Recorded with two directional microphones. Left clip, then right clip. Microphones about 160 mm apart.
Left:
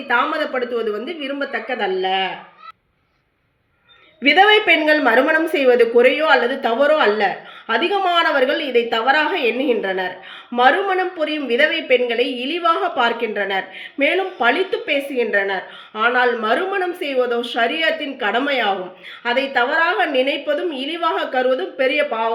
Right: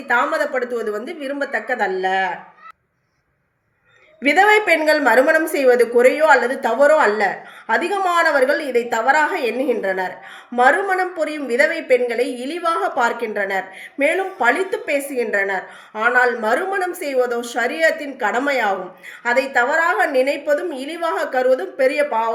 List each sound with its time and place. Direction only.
0.1 s a woman's voice: 30° left (ahead or behind)
4.4 s a woman's voice: 30° left (ahead or behind)